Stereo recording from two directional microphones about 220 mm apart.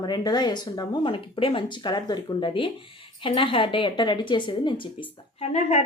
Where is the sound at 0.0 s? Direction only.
20° left (ahead or behind).